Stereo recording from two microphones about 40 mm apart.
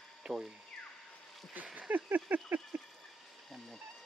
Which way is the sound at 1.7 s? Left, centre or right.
Right.